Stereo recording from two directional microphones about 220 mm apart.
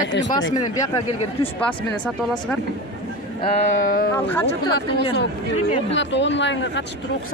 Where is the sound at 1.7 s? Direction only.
5° left (ahead or behind).